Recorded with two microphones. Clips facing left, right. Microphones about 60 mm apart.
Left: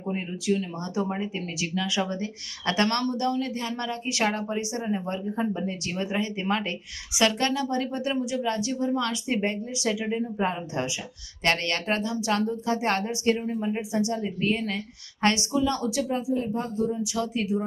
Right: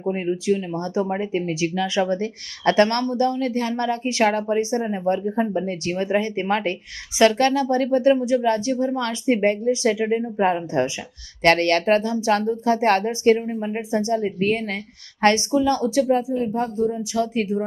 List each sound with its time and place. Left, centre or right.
0.1 s speech: right
13.4 s speech: right
13.9 s speech: right